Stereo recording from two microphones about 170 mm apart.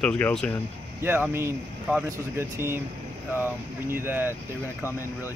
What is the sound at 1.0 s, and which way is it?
Speech, 15° right (ahead or behind).